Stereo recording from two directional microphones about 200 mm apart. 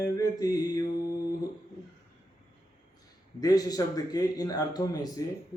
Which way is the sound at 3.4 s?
20° left (ahead or behind).